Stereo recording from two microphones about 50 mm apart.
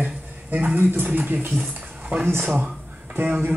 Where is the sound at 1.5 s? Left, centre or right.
Right.